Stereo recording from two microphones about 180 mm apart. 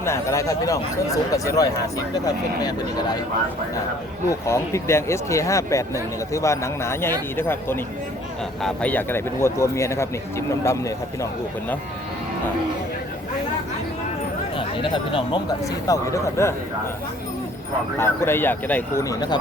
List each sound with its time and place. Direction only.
0.0 s speech: 15° left (ahead or behind)
4.3 s speech: 15° left (ahead or behind)
14.5 s speech: 30° left (ahead or behind)
17.9 s speech: 15° left (ahead or behind)